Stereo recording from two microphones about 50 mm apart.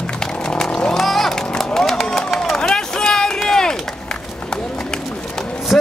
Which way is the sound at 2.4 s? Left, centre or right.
Centre.